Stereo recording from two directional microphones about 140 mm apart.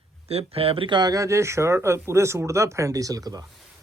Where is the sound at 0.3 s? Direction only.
45° right (ahead or behind).